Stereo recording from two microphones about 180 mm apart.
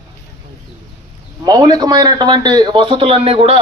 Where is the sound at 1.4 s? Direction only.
20° right (ahead or behind).